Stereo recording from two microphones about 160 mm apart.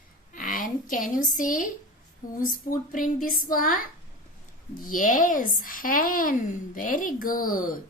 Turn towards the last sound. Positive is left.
turn(degrees=60)  # may be behind; listen again after turning